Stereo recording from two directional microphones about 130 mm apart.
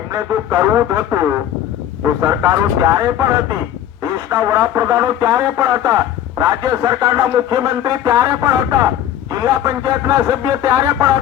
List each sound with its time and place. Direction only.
0.1 s speech: 25° right (ahead or behind)